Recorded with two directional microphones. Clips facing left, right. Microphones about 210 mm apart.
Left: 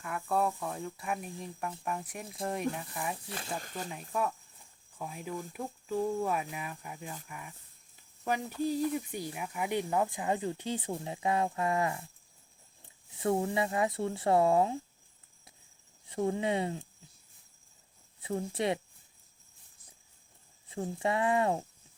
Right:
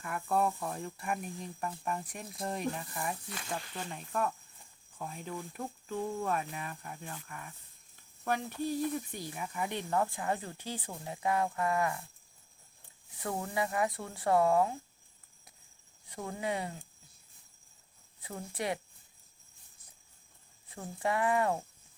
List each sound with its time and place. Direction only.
0.0 s speech: centre (ahead or behind)
3.6 s speech: 45° left (ahead or behind)
4.1 s speech: 5° left (ahead or behind); by 12.0 s 20° left (ahead or behind)
13.1 s speech: 25° left (ahead or behind)
16.0 s speech: 25° left (ahead or behind)
18.2 s speech: 25° left (ahead or behind)
20.7 s speech: 25° left (ahead or behind)